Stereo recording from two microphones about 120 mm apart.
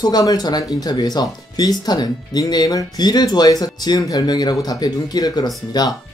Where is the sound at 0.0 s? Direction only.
30° left (ahead or behind).